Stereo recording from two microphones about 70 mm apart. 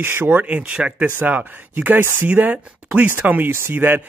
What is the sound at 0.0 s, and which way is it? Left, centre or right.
Speech, right.